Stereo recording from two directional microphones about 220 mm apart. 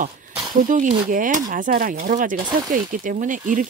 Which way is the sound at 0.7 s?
35° right (ahead or behind).